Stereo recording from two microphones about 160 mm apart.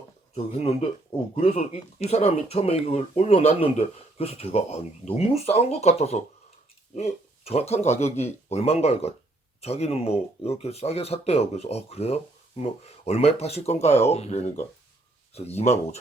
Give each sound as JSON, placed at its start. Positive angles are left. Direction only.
{"t": 0.3, "sound": "speech", "side_deg": 40}